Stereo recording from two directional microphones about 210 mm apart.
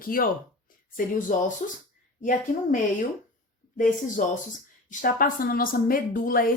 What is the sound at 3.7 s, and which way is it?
Speech, 40° left (ahead or behind).